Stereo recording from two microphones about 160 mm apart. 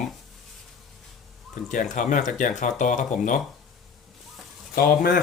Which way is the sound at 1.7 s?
50° left (ahead or behind).